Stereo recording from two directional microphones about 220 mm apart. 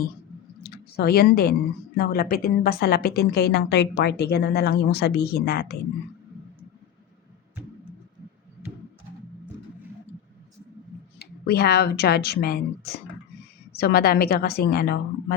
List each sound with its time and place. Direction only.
0.6 s a sound: 45° left (ahead or behind)
2.0 s a woman's voice: 40° left (ahead or behind)
11.2 s a woman's voice: 45° left (ahead or behind)